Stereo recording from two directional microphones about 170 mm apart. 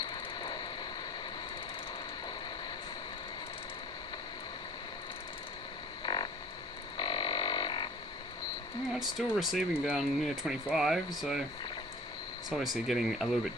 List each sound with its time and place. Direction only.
6.1 s frog: 25° left (ahead or behind)
9.0 s speech: centre (ahead or behind)
12.5 s speech: centre (ahead or behind)